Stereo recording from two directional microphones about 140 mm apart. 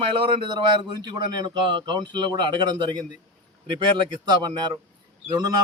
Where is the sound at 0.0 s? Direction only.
40° right (ahead or behind).